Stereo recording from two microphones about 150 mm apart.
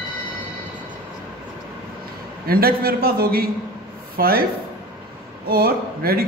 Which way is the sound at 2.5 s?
85° right.